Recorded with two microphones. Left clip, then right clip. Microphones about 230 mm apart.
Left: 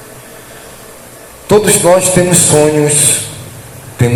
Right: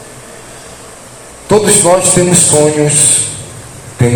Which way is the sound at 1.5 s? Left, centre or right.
Left.